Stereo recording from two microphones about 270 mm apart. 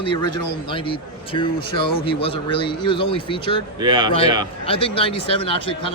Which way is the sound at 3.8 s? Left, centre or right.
Centre.